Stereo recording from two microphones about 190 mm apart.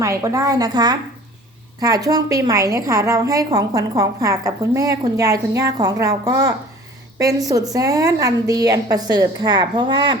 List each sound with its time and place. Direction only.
0.0 s a woman's voice: 15° right (ahead or behind)